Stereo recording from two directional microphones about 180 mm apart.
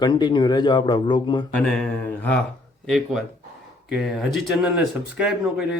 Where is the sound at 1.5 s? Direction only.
5° left (ahead or behind).